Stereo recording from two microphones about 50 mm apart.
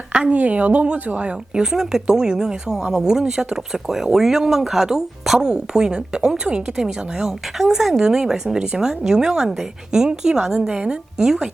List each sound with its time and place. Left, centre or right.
0.1 s a woman's voice: right